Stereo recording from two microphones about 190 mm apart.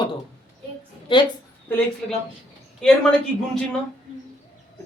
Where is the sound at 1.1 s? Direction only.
25° left (ahead or behind).